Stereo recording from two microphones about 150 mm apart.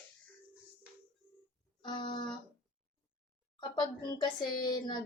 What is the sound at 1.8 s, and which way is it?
Music, 30° left (ahead or behind).